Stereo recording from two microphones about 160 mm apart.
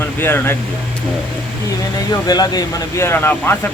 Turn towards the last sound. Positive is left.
turn(degrees=15)  # may be behind; listen again after turning